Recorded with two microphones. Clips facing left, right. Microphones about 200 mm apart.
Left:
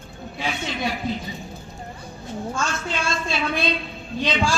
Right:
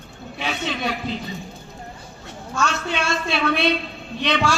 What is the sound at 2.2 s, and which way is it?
A woman's voice, 65° right (ahead or behind).